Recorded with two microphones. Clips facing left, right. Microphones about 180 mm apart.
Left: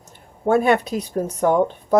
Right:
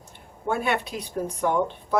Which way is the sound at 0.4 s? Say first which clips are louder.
Left 9 dB; 45° left (ahead or behind).